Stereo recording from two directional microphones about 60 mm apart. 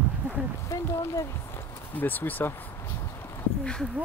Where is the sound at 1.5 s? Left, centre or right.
Left.